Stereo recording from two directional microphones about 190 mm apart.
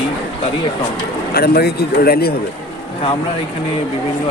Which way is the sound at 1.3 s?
55° left (ahead or behind).